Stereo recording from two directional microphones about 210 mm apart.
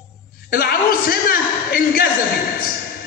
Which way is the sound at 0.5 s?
45° left (ahead or behind).